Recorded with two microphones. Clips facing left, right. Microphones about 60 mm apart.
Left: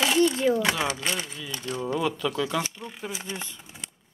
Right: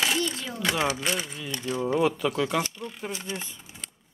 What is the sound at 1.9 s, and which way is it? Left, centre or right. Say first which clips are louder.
Speech: right 3 dB; right.